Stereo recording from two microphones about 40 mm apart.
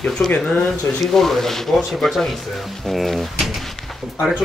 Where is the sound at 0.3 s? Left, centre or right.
Left.